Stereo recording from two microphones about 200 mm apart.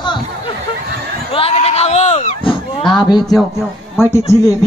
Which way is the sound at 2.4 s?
25° left (ahead or behind).